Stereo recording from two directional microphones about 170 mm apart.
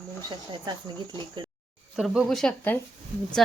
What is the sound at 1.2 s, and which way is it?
Speech, 25° right (ahead or behind).